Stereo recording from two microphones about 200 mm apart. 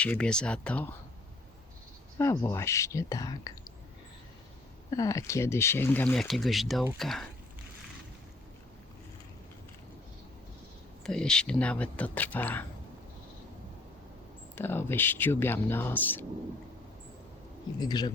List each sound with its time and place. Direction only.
0.0 s speech: 5° left (ahead or behind)
2.1 s speech: 15° left (ahead or behind)
4.9 s speech: 15° left (ahead or behind); by 7.3 s centre (ahead or behind)
11.0 s speech: 5° left (ahead or behind)
14.5 s speech: 10° left (ahead or behind)
17.7 s speech: 20° left (ahead or behind)